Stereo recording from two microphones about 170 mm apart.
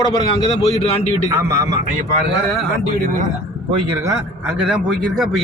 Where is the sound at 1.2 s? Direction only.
20° right (ahead or behind).